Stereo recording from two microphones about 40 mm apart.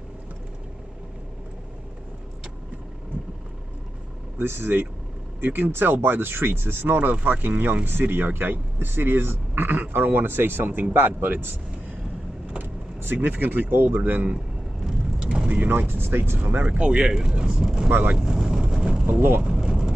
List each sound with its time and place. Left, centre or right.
4.4 s speech: right
12.6 s speech: right
14.8 s vehicle: centre
15.2 s vehicle: right
15.9 s speech: right
16.6 s speech: right
17.8 s speech: right
18.1 s vehicle: centre